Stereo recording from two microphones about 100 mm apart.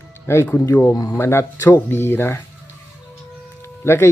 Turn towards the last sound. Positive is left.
turn(degrees=25)  # may be behind; listen again after turning